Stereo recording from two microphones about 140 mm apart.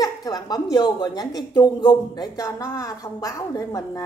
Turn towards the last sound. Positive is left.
turn(degrees=25)  # may be behind; listen again after turning